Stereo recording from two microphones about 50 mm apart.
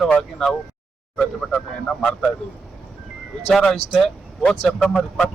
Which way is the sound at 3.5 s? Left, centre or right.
Centre.